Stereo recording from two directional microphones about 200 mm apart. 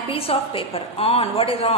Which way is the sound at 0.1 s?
30° left (ahead or behind).